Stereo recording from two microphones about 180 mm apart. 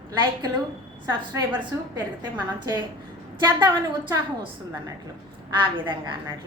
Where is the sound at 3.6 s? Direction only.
25° right (ahead or behind).